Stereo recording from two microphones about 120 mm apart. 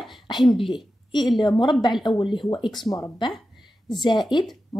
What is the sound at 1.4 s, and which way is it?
Speech, 40° left (ahead or behind).